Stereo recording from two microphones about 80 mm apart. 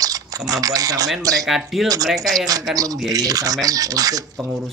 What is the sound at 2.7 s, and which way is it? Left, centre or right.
Speech, right.